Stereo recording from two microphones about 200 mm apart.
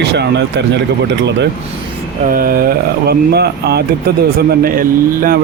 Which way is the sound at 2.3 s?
45° right (ahead or behind).